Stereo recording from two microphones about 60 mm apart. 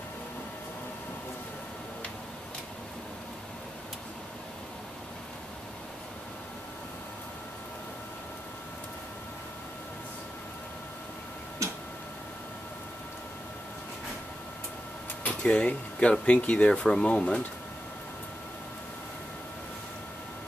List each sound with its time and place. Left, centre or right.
15.2 s speech: centre